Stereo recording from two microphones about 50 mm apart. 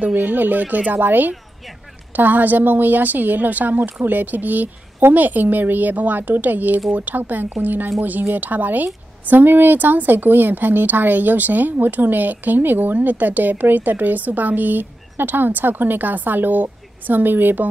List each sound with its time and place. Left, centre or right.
0.0 s speech: right